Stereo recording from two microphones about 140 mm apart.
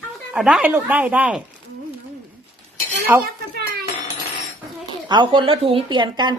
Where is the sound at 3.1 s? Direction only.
15° right (ahead or behind).